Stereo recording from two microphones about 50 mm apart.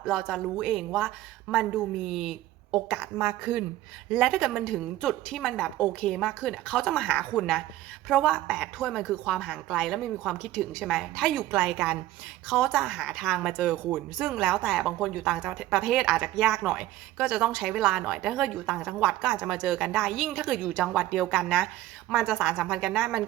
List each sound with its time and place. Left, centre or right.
0.1 s a woman's voice: centre
3.2 s speech: centre
4.1 s a woman's voice: centre
8.9 s a woman's voice: centre
11.5 s speech: centre
12.5 s a woman's voice: centre
14.9 s a woman's voice: centre
15.2 s a woman's voice: centre